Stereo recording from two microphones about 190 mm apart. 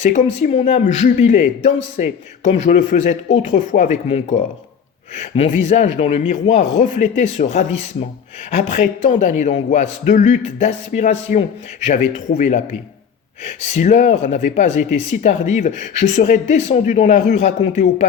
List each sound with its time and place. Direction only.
0.0 s speech: 40° left (ahead or behind)